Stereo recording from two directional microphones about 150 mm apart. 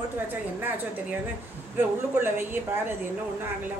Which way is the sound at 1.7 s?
15° right (ahead or behind).